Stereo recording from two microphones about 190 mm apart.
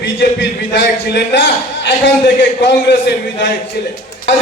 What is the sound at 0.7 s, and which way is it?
A man's voice, 70° left (ahead or behind).